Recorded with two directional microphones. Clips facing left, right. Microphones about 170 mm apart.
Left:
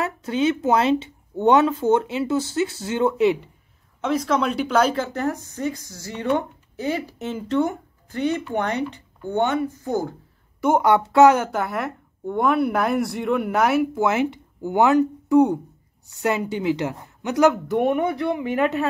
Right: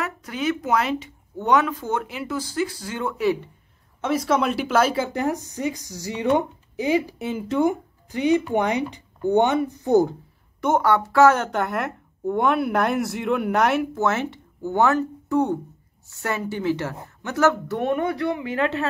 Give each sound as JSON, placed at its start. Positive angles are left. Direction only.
{"t": 0.0, "sound": "speech", "side_deg": 25}
{"t": 4.0, "sound": "speech", "side_deg": -10}
{"t": 10.6, "sound": "speech", "side_deg": 15}
{"t": 14.0, "sound": "speech", "side_deg": 15}